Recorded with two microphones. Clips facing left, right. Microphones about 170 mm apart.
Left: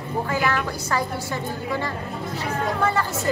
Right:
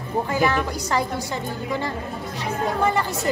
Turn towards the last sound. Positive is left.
turn(degrees=-15)  # may be behind; listen again after turning